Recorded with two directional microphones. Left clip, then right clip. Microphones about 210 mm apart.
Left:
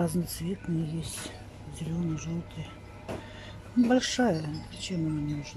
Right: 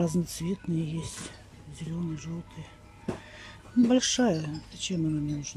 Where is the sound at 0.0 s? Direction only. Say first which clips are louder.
Right 1 dB; 15° right (ahead or behind).